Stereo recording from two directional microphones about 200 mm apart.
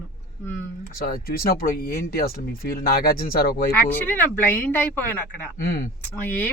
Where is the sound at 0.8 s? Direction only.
45° left (ahead or behind).